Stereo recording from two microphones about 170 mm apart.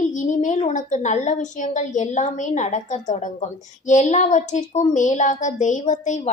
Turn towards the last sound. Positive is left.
turn(degrees=45)  # may be behind; listen again after turning